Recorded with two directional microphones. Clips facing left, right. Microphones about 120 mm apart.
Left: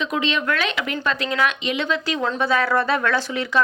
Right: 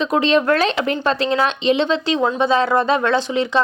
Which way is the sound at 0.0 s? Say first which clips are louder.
Right 7 dB; 35° right (ahead or behind).